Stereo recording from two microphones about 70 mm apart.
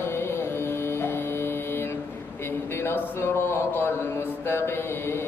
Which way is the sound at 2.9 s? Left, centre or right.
Left.